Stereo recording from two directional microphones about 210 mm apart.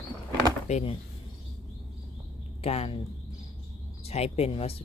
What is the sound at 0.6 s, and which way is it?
Speech, 30° left (ahead or behind).